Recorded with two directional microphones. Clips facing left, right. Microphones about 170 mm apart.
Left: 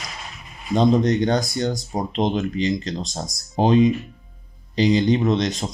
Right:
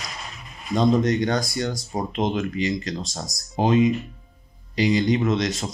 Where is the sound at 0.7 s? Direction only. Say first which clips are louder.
Left 2 dB; 20° left (ahead or behind).